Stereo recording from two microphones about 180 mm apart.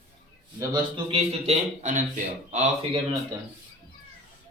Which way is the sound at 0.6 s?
25° right (ahead or behind).